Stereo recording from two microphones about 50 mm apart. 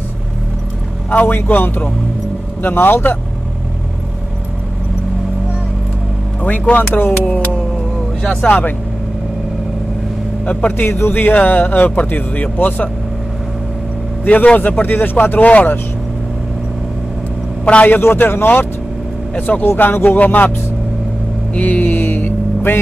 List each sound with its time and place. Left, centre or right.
1.1 s a man's voice: left
6.4 s speech: left
7.2 s vehicle: left
8.2 s speech: left
10.4 s speech: left
10.9 s a man's voice: left
11.1 s speech: left
14.2 s speech: left
17.6 s speech: left
17.9 s a man's voice: left
19.3 s speech: left
19.7 s a man's voice: left
21.5 s vehicle: left